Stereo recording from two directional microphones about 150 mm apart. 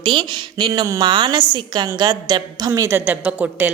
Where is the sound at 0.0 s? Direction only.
30° right (ahead or behind).